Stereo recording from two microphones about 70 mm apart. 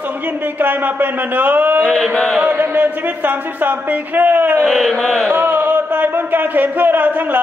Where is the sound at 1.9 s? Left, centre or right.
Centre.